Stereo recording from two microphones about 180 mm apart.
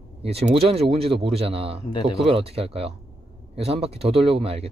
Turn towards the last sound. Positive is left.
turn(degrees=-35)  # may be behind; listen again after turning